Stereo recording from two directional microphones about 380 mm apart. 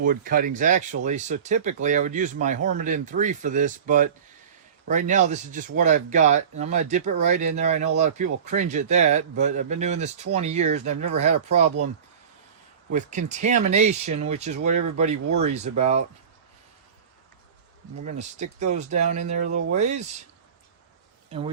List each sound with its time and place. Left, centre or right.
0.0 s speech: right
12.9 s speech: centre
18.0 s speech: centre
21.2 s speech: centre